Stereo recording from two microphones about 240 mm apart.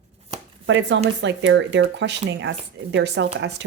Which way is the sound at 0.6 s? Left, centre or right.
Right.